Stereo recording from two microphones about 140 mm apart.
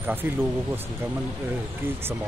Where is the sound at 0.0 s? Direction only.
15° right (ahead or behind).